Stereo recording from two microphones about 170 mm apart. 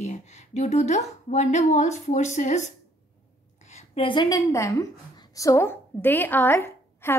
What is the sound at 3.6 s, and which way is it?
A woman's voice, 40° left (ahead or behind).